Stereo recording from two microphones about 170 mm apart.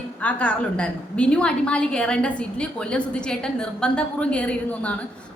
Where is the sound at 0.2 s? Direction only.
5° left (ahead or behind).